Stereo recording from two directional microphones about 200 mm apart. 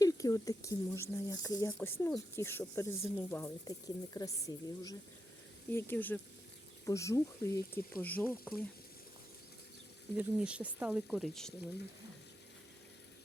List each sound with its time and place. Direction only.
0.0 s speech: 15° left (ahead or behind)
10.2 s speech: 5° right (ahead or behind)